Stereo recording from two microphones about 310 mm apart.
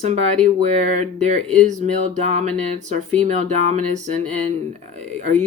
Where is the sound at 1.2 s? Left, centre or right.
Right.